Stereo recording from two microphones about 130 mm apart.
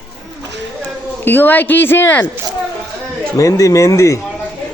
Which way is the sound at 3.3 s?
25° left (ahead or behind).